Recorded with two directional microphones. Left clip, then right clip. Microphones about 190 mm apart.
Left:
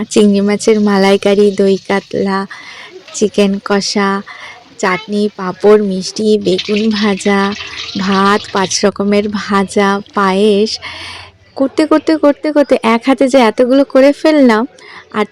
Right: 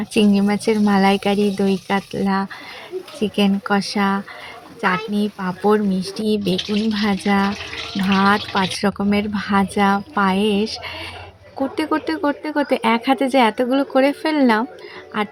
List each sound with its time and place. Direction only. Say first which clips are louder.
0.0 s speech: left 8 dB; 20° left (ahead or behind)